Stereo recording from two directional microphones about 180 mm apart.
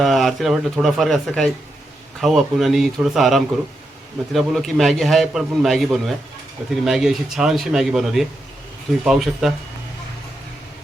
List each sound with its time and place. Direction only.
0.0 s a man's voice: centre (ahead or behind)